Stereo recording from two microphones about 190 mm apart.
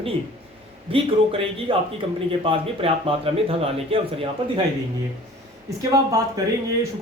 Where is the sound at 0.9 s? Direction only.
30° right (ahead or behind).